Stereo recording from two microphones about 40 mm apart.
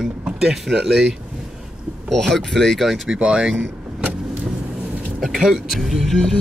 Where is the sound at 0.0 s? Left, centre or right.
Centre.